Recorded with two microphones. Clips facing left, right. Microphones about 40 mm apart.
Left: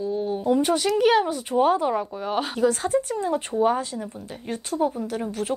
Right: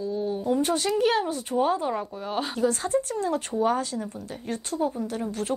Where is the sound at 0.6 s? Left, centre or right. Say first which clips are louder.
Left 3 dB; left.